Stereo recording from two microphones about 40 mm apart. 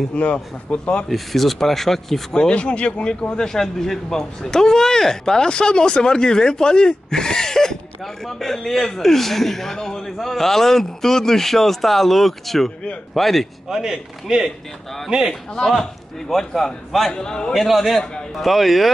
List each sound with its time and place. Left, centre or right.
0.1 s speech: left
1.0 s speech: centre
2.5 s speech: left
3.3 s a man's voice: centre
13.7 s a man's voice: centre
15.5 s a man's voice: centre
17.1 s speech: centre
17.6 s a man's voice: centre